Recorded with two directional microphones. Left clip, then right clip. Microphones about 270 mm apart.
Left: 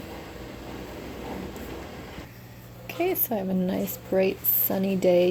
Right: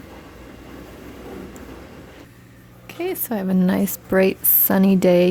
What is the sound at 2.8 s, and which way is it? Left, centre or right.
Speech, right.